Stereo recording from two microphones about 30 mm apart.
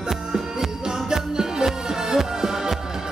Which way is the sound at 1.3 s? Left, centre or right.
Right.